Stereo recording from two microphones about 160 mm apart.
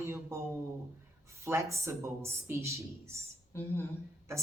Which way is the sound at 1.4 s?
15° right (ahead or behind).